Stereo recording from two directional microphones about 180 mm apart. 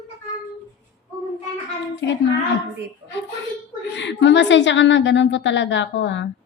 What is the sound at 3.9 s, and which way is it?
A woman's voice, 80° left.